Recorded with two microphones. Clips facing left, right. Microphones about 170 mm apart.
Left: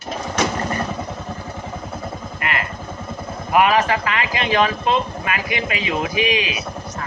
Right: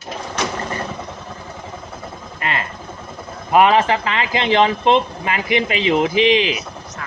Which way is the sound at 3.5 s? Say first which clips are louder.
Right 3 dB; 25° right (ahead or behind).